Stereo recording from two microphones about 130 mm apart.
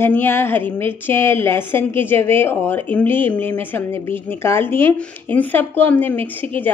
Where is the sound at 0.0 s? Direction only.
15° left (ahead or behind).